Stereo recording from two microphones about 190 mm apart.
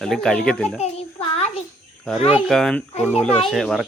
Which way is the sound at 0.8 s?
35° left (ahead or behind).